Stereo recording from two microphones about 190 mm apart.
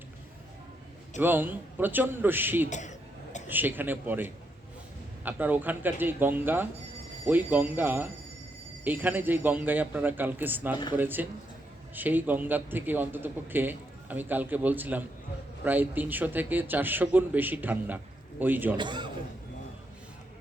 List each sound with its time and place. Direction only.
1.2 s a man's voice: 10° right (ahead or behind)
2.6 s speech: 40° left (ahead or behind)
3.5 s a man's voice: 10° right (ahead or behind)
18.8 s a man's voice: 25° right (ahead or behind)